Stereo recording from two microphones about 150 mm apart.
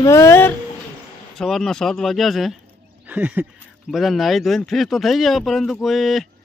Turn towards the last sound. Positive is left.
turn(degrees=0)  # may be behind; listen again after turning